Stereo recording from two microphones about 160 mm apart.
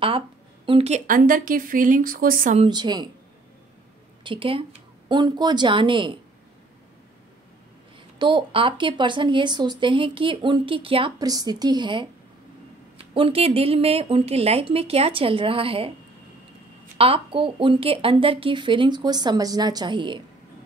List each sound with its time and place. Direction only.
0.7 s speech: 40° right (ahead or behind); by 2.5 s 60° right (ahead or behind)
2.7 s a woman's voice: 25° right (ahead or behind)
4.2 s speech: 30° right (ahead or behind)
8.2 s speech: 30° right (ahead or behind)
17.0 s speech: 35° right (ahead or behind)